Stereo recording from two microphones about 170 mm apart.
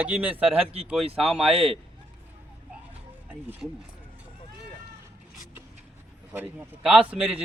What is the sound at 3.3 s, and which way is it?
Speech, 10° right (ahead or behind).